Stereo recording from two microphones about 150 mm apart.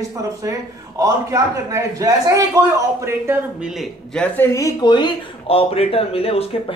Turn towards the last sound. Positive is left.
turn(degrees=40)  # may be behind; listen again after turning